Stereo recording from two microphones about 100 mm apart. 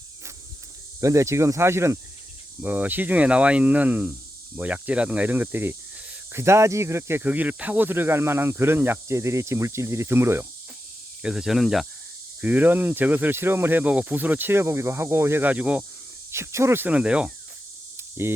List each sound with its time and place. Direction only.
1.0 s speech: 30° right (ahead or behind)
2.6 s speech: 15° right (ahead or behind)
7.2 s speech: 15° right (ahead or behind)
11.2 s speech: 5° right (ahead or behind)
12.4 s speech: 15° right (ahead or behind)
16.3 s speech: 25° right (ahead or behind); by 17.3 s 10° right (ahead or behind)